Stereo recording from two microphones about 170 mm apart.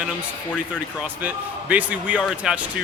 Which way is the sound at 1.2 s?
10° right (ahead or behind).